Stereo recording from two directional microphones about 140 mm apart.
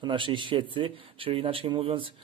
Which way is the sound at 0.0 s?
35° right (ahead or behind).